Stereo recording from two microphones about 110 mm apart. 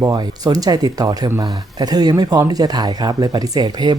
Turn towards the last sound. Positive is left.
turn(degrees=-40)  # may be behind; listen again after turning